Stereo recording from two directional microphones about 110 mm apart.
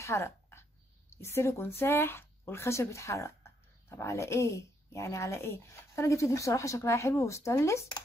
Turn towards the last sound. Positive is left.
turn(degrees=25)  # may be behind; listen again after turning